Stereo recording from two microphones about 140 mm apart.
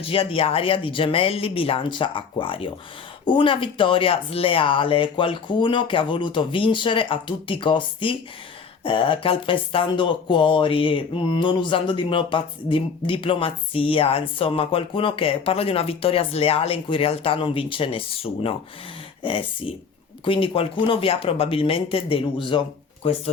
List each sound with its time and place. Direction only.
0.0 s speech: 40° left (ahead or behind)